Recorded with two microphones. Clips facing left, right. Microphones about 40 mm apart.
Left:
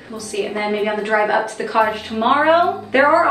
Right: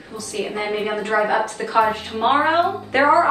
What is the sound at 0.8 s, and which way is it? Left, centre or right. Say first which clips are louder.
Speech: left 3 dB; left.